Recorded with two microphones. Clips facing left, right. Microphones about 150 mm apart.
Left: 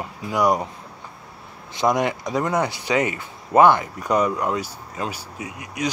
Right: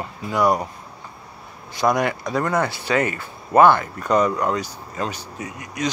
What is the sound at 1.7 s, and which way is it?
Speech, 20° left (ahead or behind).